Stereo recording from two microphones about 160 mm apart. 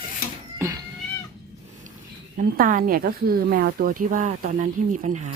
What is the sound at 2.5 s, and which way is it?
Speech, 60° right (ahead or behind).